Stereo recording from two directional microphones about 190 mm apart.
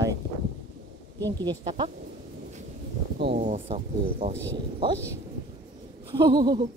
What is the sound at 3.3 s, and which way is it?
Speech, 40° right (ahead or behind).